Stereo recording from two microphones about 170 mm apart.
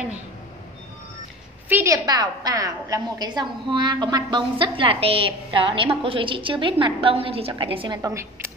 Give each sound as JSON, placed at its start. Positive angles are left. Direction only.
{"t": 1.7, "sound": "a woman's voice", "side_deg": -15}